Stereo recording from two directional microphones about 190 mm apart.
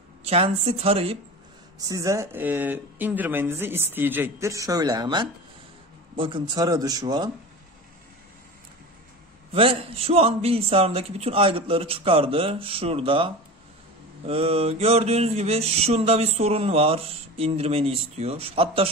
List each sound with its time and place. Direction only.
0.2 s mantra: 35° right (ahead or behind)
1.8 s speech: 15° right (ahead or behind)
9.5 s mantra: 30° right (ahead or behind)